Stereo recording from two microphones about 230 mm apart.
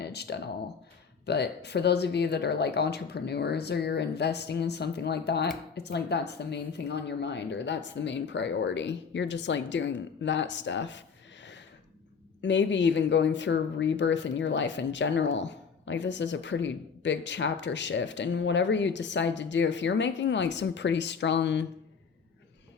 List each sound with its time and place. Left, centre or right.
0.0 s a sound: left
1.2 s a woman's voice: left
12.4 s a woman's voice: left